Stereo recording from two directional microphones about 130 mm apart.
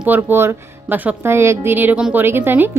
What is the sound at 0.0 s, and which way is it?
A woman's voice, 15° right (ahead or behind).